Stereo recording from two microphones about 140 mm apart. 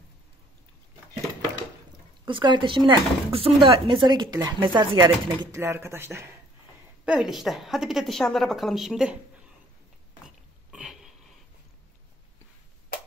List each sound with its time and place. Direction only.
2.2 s speech: 35° right (ahead or behind)
5.5 s speech: 20° right (ahead or behind)
7.1 s a woman's voice: centre (ahead or behind)
10.7 s a sound: 5° right (ahead or behind)